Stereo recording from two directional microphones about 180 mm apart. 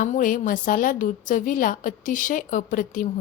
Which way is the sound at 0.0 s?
45° left (ahead or behind).